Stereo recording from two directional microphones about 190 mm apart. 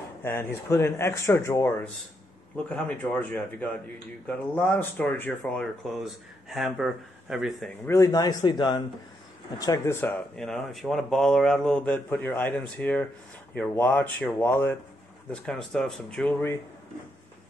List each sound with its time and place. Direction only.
0.2 s speech: 10° left (ahead or behind)
7.8 s a man's voice: 15° left (ahead or behind)